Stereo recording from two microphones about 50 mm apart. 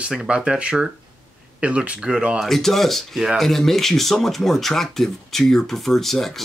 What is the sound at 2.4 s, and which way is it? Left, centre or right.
Speech, centre.